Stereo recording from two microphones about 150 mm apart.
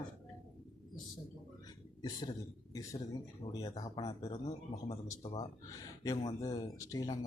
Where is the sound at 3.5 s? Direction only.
25° left (ahead or behind).